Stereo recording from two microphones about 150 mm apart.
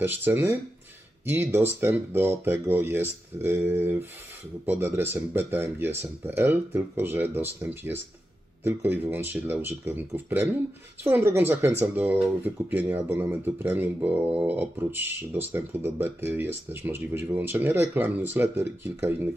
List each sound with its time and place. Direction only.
0.0 s speech: 15° right (ahead or behind)